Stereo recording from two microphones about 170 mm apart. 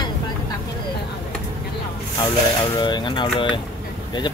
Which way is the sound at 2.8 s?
25° left (ahead or behind).